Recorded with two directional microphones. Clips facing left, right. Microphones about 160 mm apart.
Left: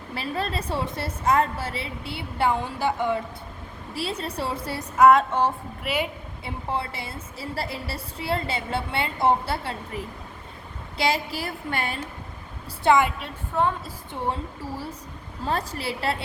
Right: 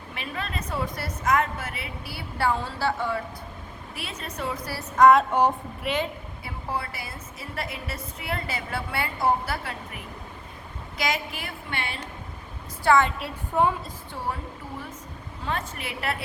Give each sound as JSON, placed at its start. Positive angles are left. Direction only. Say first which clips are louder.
{"t": 0.1, "sound": "a woman's voice", "louder": "left 5 dB", "side_deg": 35}
{"t": 3.9, "sound": "a woman's voice", "louder": "left 7 dB", "side_deg": 30}
{"t": 4.9, "sound": "a sound", "louder": "even", "side_deg": 5}
{"t": 5.8, "sound": "a woman's voice", "louder": "even", "side_deg": 10}
{"t": 6.4, "sound": "a woman's voice", "louder": "left 3 dB", "side_deg": 25}
{"t": 12.8, "sound": "a woman's voice", "louder": "left 1 dB", "side_deg": 15}
{"t": 13.5, "sound": "a woman's voice", "louder": "right 1 dB", "side_deg": -15}
{"t": 15.4, "sound": "a woman's voice", "louder": "left 4 dB", "side_deg": 35}